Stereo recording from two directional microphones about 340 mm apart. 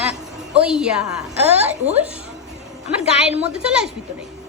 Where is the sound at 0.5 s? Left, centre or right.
Centre.